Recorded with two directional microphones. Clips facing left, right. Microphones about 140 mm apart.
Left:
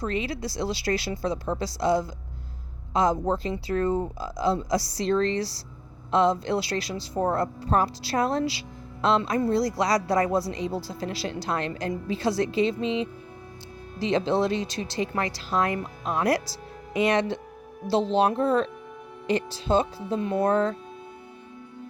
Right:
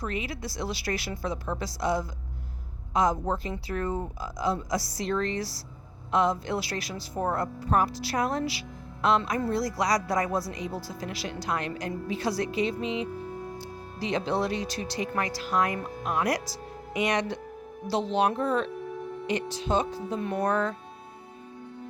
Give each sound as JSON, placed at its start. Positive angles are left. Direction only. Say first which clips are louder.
{"t": 0.0, "sound": "speech", "louder": "left 4 dB", "side_deg": 30}
{"t": 4.2, "sound": "speech", "louder": "left 4 dB", "side_deg": 30}